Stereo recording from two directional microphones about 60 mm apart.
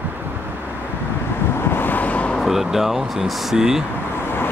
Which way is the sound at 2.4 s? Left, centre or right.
Centre.